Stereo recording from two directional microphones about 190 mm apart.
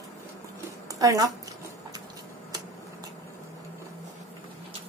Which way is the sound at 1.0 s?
20° right (ahead or behind).